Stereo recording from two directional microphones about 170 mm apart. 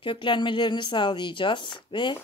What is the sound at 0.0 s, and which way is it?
Speech, 30° left (ahead or behind).